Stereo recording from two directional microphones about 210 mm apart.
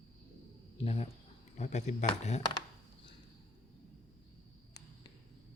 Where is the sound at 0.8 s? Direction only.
30° left (ahead or behind).